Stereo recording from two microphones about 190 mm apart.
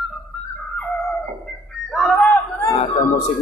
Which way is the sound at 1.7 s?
Centre (ahead or behind).